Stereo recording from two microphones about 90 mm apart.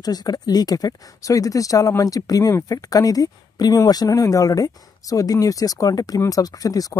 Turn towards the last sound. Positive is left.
turn(degrees=40)  # may be behind; listen again after turning